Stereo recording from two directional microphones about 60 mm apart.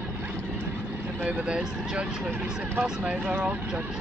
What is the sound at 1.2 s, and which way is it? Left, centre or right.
Speech, centre.